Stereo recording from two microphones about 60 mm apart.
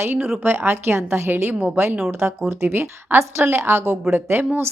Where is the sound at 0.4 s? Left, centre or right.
Right.